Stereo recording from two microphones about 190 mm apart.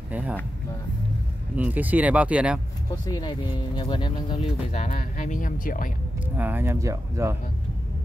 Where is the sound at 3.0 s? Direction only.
20° left (ahead or behind).